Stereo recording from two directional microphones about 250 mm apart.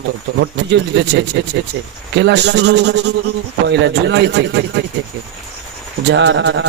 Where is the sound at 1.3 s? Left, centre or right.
Right.